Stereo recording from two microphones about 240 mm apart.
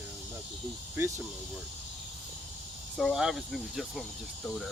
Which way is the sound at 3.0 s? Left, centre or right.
Centre.